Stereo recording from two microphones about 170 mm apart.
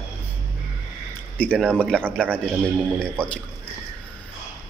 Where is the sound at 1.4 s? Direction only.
5° left (ahead or behind).